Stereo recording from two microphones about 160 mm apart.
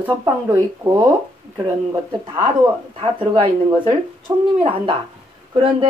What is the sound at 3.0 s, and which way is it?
Speech, 35° right (ahead or behind).